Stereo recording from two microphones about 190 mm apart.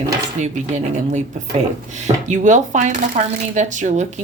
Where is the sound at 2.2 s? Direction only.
40° right (ahead or behind).